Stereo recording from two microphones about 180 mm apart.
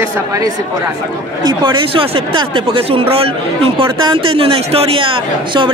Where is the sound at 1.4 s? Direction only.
25° right (ahead or behind).